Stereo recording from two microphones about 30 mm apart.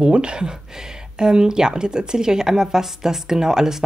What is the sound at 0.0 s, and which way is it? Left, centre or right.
A woman's voice, right.